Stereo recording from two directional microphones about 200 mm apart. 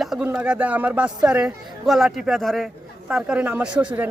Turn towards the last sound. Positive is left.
turn(degrees=-5)  # may be behind; listen again after turning